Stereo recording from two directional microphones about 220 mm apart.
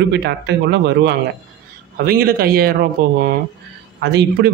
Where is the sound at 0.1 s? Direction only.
50° right (ahead or behind).